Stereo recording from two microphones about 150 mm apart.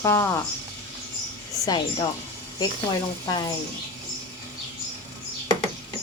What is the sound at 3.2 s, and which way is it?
Speech, 30° left (ahead or behind).